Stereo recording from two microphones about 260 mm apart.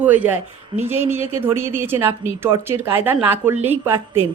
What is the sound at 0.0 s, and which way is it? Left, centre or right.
A woman's voice, centre.